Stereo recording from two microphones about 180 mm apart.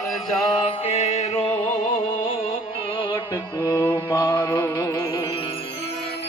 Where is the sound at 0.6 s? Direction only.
35° left (ahead or behind).